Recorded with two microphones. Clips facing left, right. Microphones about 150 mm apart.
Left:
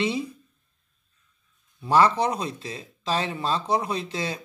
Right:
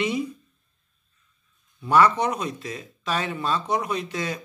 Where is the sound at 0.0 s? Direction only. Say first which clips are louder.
Right 1 dB; 30° left (ahead or behind).